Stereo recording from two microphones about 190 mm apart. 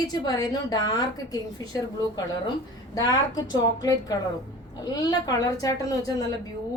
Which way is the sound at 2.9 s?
20° left (ahead or behind).